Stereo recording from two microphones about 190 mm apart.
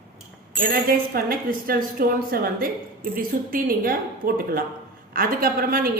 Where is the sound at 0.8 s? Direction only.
50° right (ahead or behind).